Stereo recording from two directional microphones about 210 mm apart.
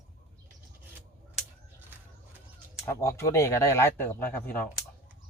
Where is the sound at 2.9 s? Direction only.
15° left (ahead or behind).